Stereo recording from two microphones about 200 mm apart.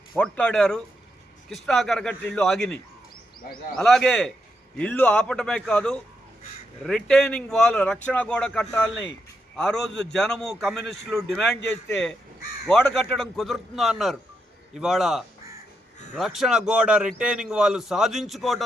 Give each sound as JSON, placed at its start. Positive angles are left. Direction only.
{"t": 0.1, "sound": "speech", "side_deg": 5}
{"t": 3.4, "sound": "a man's voice", "side_deg": 45}
{"t": 3.8, "sound": "speech", "side_deg": 5}